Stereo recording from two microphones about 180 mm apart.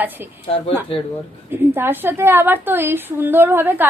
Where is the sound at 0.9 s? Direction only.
30° left (ahead or behind).